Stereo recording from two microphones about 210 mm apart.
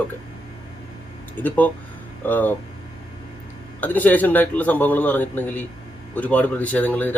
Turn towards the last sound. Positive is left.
turn(degrees=10)  # may be behind; listen again after turning